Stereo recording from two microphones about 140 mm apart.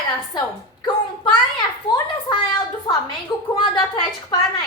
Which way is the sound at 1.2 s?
35° left (ahead or behind).